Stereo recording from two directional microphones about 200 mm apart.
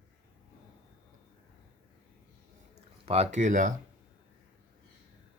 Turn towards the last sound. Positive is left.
turn(degrees=-40)  # may be behind; listen again after turning